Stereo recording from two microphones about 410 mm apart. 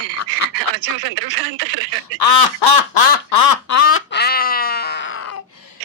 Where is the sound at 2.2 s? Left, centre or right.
Left.